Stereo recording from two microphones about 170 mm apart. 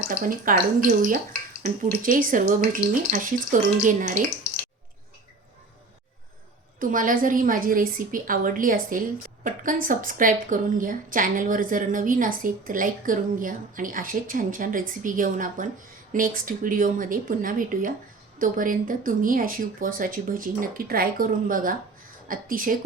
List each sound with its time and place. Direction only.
0.2 s a woman's voice: 55° right (ahead or behind)
6.7 s a woman's voice: 55° right (ahead or behind)